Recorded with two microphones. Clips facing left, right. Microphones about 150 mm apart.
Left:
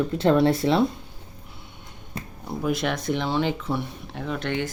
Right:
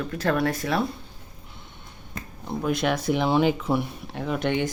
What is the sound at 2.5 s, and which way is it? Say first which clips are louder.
Speech: right 1 dB; centre (ahead or behind).